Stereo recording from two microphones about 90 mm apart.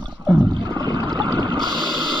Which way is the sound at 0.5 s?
55° right (ahead or behind).